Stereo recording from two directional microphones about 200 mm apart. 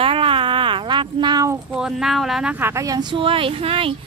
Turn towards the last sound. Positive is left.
turn(degrees=-25)  # may be behind; listen again after turning